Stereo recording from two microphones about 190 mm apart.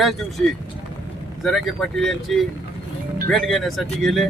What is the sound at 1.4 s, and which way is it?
Speech, centre (ahead or behind).